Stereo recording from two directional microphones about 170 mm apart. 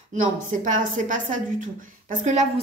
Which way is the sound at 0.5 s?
50° right (ahead or behind).